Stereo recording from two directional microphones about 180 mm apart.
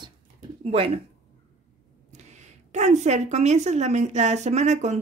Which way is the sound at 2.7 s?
40° right (ahead or behind).